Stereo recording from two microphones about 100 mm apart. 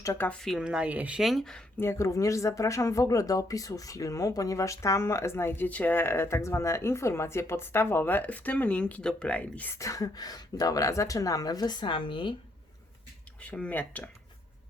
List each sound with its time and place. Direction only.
0.0 s a woman's voice: 30° left (ahead or behind)
0.3 s speech: 5° left (ahead or behind)
0.6 s speech: 10° right (ahead or behind)
1.2 s speech: centre (ahead or behind)
1.8 s speech: 25° left (ahead or behind)
9.7 s speech: 35° left (ahead or behind); by 12.3 s 55° left (ahead or behind)
13.4 s speech: 15° left (ahead or behind)